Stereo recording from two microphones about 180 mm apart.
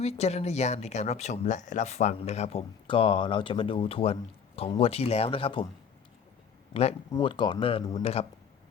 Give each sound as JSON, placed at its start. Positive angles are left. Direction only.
{"t": 0.0, "sound": "speech", "side_deg": 35}
{"t": 7.1, "sound": "speech", "side_deg": 25}